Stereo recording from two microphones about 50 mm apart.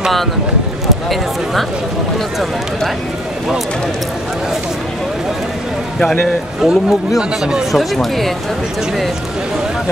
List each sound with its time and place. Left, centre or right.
6.6 s speech: centre
7.7 s speech: centre